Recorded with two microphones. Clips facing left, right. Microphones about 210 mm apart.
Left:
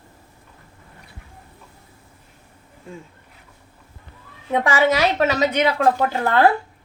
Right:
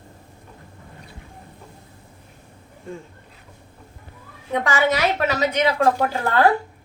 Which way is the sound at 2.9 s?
5° left (ahead or behind).